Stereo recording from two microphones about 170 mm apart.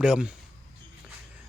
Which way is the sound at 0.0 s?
5° right (ahead or behind).